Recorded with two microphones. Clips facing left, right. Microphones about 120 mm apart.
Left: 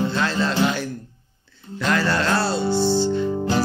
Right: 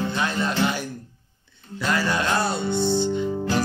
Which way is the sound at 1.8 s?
10° right (ahead or behind).